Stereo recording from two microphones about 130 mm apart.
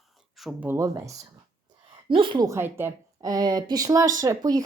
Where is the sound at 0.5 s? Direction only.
20° right (ahead or behind).